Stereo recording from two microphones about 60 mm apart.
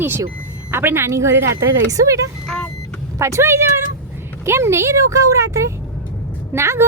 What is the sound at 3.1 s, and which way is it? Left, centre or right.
Speech, right.